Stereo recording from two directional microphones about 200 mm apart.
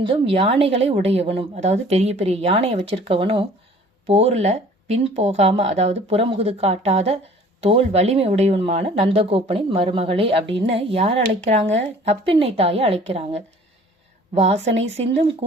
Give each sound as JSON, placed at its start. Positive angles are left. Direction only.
{"t": 0.0, "sound": "speech", "side_deg": -25}